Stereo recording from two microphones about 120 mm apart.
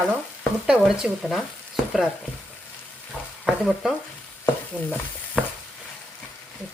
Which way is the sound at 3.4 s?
Centre (ahead or behind).